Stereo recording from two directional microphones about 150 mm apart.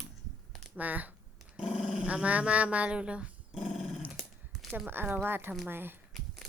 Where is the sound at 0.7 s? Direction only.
10° right (ahead or behind).